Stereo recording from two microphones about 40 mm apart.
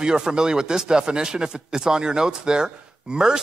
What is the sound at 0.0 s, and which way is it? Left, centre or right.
Speech, centre.